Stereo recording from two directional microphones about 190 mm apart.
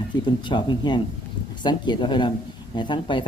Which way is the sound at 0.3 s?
25° left (ahead or behind).